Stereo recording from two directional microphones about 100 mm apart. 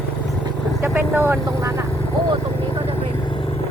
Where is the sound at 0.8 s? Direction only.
20° right (ahead or behind).